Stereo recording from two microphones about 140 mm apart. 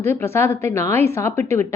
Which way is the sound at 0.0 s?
15° left (ahead or behind).